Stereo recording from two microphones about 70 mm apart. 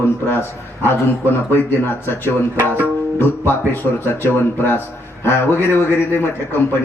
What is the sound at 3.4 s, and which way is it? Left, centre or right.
A man's voice, left.